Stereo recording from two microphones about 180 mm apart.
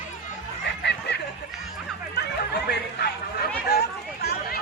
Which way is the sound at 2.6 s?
65° left (ahead or behind).